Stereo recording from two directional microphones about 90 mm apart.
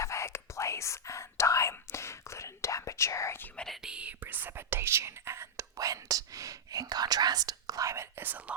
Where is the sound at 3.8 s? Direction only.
10° right (ahead or behind); by 8.3 s 30° right (ahead or behind).